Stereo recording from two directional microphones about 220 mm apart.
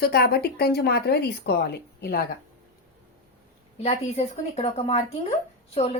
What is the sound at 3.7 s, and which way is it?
A woman's voice, 30° left (ahead or behind).